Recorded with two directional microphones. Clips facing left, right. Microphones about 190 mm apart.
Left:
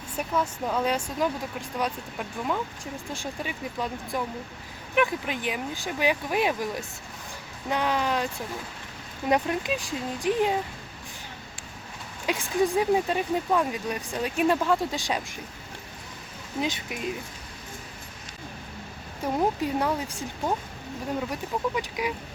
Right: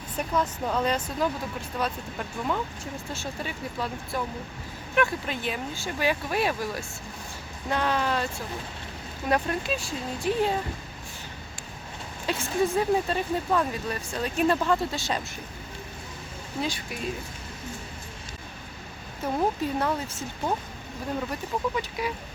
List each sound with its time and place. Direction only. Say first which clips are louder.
0.2 s speech: even; 10° left (ahead or behind)
9.3 s speech: left 1 dB; 15° left (ahead or behind)
12.2 s speech: left 1 dB; 15° left (ahead or behind)
16.6 s speech: left 1 dB; 20° left (ahead or behind)
19.2 s speech: left 1 dB; 15° left (ahead or behind)
21.8 s speech: left 1 dB; 15° left (ahead or behind)